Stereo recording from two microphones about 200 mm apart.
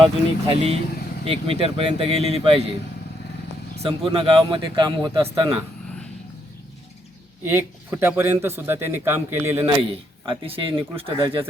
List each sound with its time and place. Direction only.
0.0 s a man's voice: 30° right (ahead or behind)
3.8 s a man's voice: 25° right (ahead or behind)
7.4 s a man's voice: 10° right (ahead or behind)
9.6 s a man's voice: 25° right (ahead or behind)